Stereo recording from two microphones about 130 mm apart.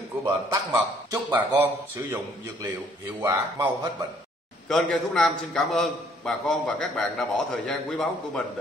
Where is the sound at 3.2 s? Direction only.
25° right (ahead or behind).